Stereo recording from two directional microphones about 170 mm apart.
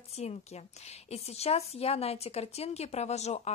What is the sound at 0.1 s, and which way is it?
A woman's voice, 40° left (ahead or behind).